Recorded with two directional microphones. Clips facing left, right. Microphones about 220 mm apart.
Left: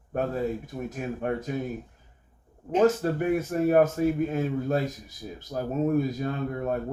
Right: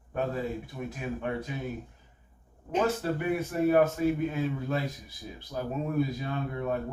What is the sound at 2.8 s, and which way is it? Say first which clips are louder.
Speech: left 6 dB; 45° left (ahead or behind).